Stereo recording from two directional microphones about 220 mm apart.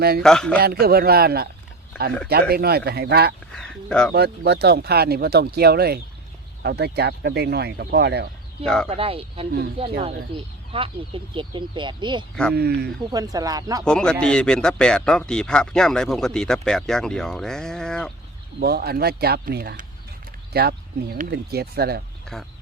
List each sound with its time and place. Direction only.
0.2 s speech: 5° left (ahead or behind)
0.6 s speech: 45° right (ahead or behind)
3.5 s speech: 5° left (ahead or behind)
4.1 s speech: 45° right (ahead or behind)
8.6 s speech: 5° left (ahead or behind)
8.9 s speech: 25° right (ahead or behind)
12.5 s speech: 45° right (ahead or behind)
13.1 s speech: 15° right (ahead or behind)
13.8 s speech: 5° left (ahead or behind)
18.6 s speech: 45° right (ahead or behind)
22.3 s speech: centre (ahead or behind)